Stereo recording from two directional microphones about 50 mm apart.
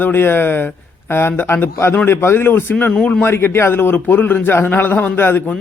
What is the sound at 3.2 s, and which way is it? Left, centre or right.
A man's voice, left.